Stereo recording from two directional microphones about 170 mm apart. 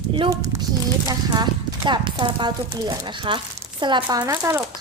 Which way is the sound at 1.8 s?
25° right (ahead or behind).